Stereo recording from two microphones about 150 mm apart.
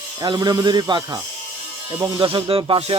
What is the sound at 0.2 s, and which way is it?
Speech, 25° right (ahead or behind).